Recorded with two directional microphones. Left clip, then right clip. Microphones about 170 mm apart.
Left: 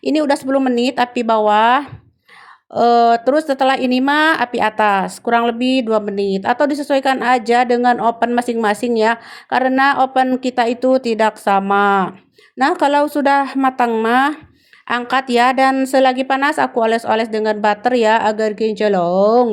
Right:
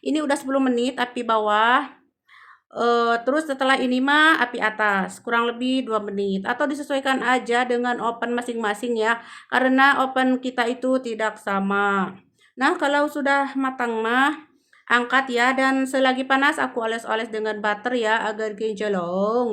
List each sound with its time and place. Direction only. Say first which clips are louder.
0.0 s speech: left 7 dB; 35° left (ahead or behind)